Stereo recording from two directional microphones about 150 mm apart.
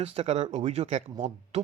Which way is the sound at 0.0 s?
40° right (ahead or behind).